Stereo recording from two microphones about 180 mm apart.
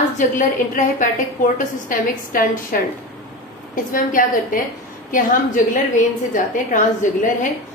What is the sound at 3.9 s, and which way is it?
A woman's voice, 50° left (ahead or behind).